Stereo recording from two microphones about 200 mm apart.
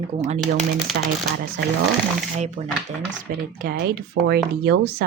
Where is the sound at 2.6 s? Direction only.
35° right (ahead or behind).